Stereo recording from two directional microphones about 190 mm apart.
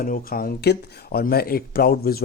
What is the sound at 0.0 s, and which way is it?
Speech, 50° left (ahead or behind).